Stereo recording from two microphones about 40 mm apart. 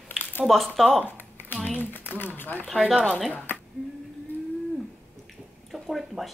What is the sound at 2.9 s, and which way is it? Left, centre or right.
Speech, right.